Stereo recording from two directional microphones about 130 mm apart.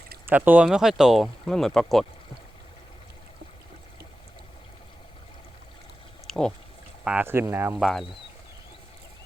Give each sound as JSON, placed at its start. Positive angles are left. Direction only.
{"t": 0.3, "sound": "speech", "side_deg": -15}
{"t": 6.2, "sound": "a sound", "side_deg": 5}
{"t": 7.0, "sound": "speech", "side_deg": -5}
{"t": 7.3, "sound": "speech", "side_deg": -20}
{"t": 7.8, "sound": "speech", "side_deg": 0}